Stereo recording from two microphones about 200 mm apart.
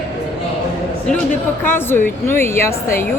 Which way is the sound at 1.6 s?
10° left (ahead or behind).